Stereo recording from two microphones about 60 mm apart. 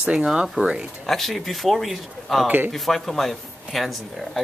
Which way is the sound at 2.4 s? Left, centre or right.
Right.